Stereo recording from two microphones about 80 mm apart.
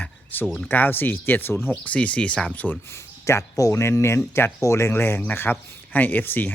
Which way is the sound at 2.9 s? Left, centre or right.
Left.